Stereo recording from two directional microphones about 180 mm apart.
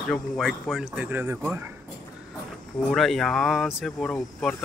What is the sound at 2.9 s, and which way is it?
Speech, centre (ahead or behind).